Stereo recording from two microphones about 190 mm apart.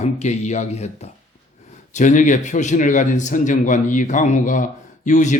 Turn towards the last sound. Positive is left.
turn(degrees=40)  # may be behind; listen again after turning